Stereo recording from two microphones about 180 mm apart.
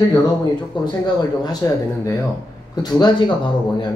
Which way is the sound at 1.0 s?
25° left (ahead or behind).